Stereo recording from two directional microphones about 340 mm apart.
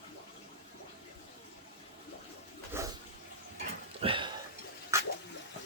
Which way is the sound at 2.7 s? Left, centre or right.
Centre.